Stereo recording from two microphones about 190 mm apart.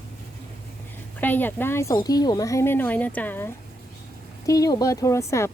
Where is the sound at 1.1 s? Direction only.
10° left (ahead or behind).